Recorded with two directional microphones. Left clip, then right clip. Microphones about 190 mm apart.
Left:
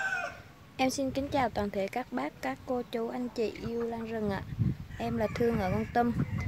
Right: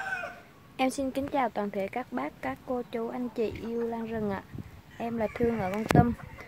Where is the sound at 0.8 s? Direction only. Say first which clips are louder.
Right 1 dB; centre (ahead or behind).